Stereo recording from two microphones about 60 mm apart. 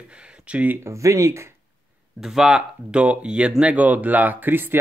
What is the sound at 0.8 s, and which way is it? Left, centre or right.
Speech, right.